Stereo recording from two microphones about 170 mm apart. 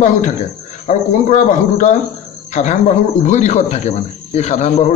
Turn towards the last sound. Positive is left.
turn(degrees=45)  # may be behind; listen again after turning